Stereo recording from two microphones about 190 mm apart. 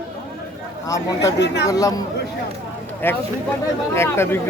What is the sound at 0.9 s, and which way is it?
Speech, 15° left (ahead or behind).